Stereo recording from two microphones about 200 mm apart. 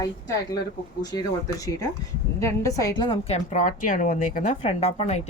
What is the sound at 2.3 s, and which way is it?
A woman's voice, 15° left (ahead or behind).